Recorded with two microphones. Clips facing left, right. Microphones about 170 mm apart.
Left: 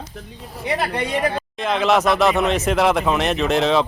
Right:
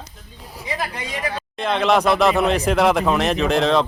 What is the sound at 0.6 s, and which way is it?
Speech, 65° left (ahead or behind).